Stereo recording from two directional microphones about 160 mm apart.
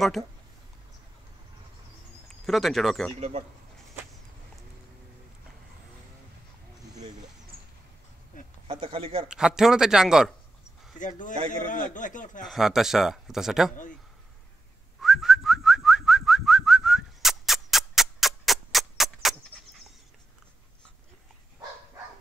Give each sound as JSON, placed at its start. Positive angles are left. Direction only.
{"t": 0.2, "sound": "speech", "side_deg": 0}
{"t": 2.2, "sound": "speech", "side_deg": 0}
{"t": 8.6, "sound": "speech", "side_deg": -35}
{"t": 9.3, "sound": "speech", "side_deg": -5}
{"t": 11.0, "sound": "a man's voice", "side_deg": 55}
{"t": 12.4, "sound": "speech", "side_deg": 0}
{"t": 15.0, "sound": "whistling", "side_deg": 0}